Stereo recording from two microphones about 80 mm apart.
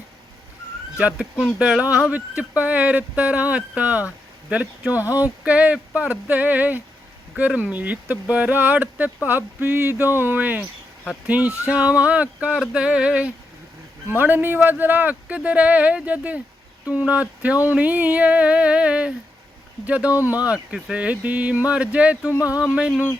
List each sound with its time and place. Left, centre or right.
0.9 s speech: centre